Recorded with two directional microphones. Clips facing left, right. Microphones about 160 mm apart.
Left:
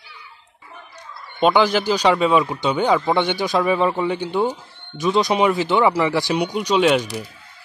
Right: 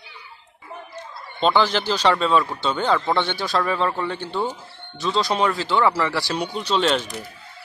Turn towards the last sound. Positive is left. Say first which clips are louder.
# left 4 dB
turn(degrees=10)  # may be behind; listen again after turning